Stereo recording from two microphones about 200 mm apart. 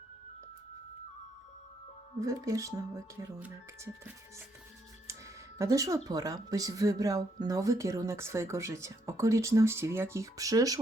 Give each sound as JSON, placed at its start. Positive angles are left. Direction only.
{"t": 2.1, "sound": "speech", "side_deg": -15}
{"t": 5.5, "sound": "speech", "side_deg": -15}